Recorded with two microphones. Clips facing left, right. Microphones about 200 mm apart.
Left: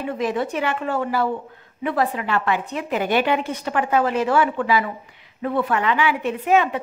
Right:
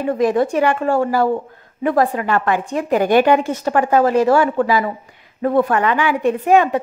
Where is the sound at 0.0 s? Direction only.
45° right (ahead or behind).